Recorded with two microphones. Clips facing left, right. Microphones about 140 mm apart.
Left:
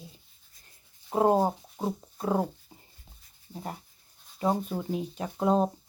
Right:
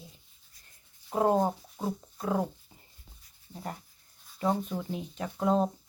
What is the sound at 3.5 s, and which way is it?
A woman's voice, 10° left (ahead or behind).